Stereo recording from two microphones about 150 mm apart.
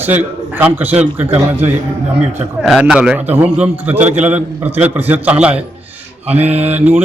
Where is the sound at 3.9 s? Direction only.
50° right (ahead or behind).